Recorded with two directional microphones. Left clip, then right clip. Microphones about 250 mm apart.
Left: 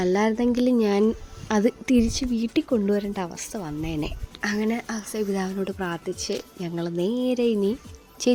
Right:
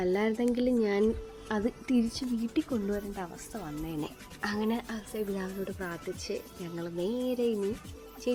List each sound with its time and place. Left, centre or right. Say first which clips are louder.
0.0 s a woman's voice: left 6 dB; left
4.9 s a woman's voice: left 7 dB; left